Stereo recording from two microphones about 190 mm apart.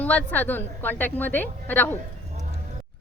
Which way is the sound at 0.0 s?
10° left (ahead or behind).